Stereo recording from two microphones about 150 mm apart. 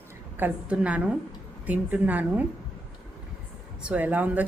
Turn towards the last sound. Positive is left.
turn(degrees=-10)  # may be behind; listen again after turning